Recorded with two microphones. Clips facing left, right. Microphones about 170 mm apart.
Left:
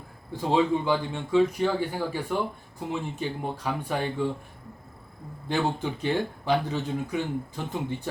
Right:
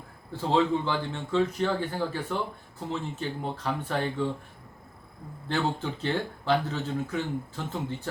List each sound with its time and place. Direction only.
0.3 s speech: 15° left (ahead or behind)
5.5 s speech: 15° left (ahead or behind)